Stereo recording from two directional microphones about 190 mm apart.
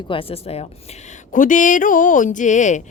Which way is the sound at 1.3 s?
45° left (ahead or behind).